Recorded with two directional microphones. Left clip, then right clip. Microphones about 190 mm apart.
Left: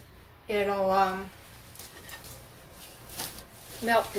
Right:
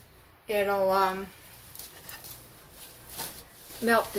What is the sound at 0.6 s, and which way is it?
Speech, 40° right (ahead or behind).